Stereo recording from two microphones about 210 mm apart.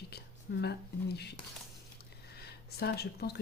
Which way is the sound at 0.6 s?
50° left (ahead or behind).